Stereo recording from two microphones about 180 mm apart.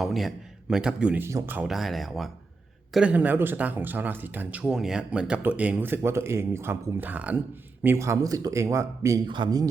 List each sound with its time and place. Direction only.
0.0 s a man's voice: centre (ahead or behind); by 9.6 s 25° right (ahead or behind)